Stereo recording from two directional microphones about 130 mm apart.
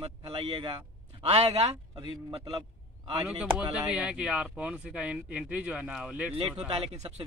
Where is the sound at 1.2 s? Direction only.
55° right (ahead or behind).